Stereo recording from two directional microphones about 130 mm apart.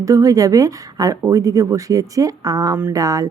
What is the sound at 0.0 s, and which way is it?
Speech, 25° right (ahead or behind).